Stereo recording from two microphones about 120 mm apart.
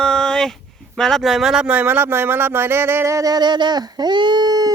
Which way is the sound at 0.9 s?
5° left (ahead or behind).